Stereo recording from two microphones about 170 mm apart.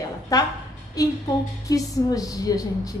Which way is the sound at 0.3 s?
20° left (ahead or behind).